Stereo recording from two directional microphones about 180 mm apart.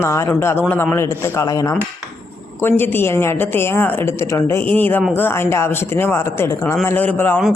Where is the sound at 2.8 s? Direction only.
10° left (ahead or behind).